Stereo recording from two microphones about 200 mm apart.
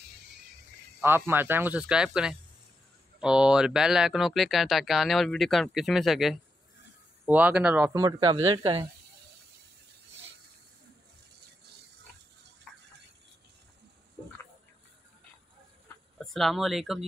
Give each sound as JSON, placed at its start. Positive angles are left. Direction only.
{"t": 1.0, "sound": "speech", "side_deg": -10}
{"t": 3.2, "sound": "speech", "side_deg": -5}
{"t": 8.0, "sound": "speech", "side_deg": -20}
{"t": 16.2, "sound": "speech", "side_deg": 0}